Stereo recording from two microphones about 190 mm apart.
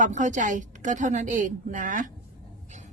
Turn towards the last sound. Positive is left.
turn(degrees=-45)  # may be behind; listen again after turning